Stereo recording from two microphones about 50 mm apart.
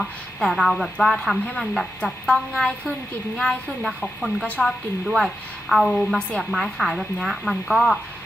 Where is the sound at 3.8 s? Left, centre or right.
Centre.